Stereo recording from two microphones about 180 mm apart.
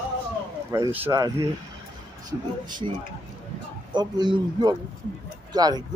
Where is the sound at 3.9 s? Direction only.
25° right (ahead or behind).